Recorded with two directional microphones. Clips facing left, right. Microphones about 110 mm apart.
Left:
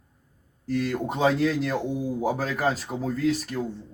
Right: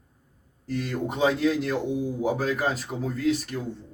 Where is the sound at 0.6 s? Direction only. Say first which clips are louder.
Left 3 dB; 40° left (ahead or behind).